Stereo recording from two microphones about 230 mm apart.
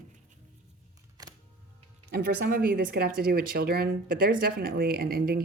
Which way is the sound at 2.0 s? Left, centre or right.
Right.